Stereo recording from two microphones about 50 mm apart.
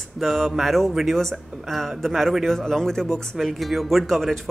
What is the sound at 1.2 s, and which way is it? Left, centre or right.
Speech, centre.